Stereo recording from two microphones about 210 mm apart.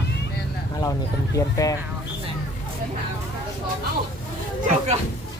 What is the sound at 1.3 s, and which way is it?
Speech, 15° left (ahead or behind).